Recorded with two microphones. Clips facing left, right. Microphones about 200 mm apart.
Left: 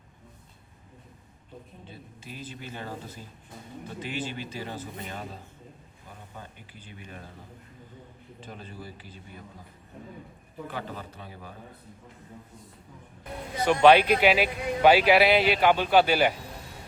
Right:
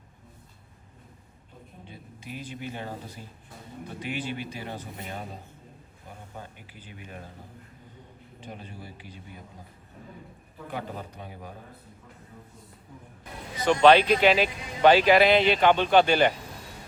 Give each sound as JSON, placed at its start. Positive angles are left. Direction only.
{"t": 1.9, "sound": "speech", "side_deg": -15}
{"t": 4.0, "sound": "speech", "side_deg": -15}
{"t": 4.9, "sound": "speech", "side_deg": 0}
{"t": 6.3, "sound": "speech", "side_deg": -10}
{"t": 8.4, "sound": "speech", "side_deg": -10}
{"t": 10.7, "sound": "speech", "side_deg": -15}
{"t": 13.7, "sound": "speech", "side_deg": 10}